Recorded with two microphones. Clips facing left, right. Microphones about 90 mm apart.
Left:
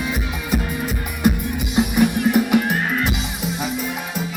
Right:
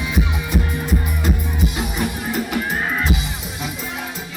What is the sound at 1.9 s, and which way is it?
Music, 60° left (ahead or behind).